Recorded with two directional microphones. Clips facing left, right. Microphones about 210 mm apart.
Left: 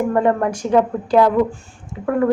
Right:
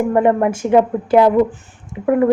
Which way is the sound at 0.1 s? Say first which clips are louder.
Right 3 dB; 20° right (ahead or behind).